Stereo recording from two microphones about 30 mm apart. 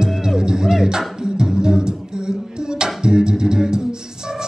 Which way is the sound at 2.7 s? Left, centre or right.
Right.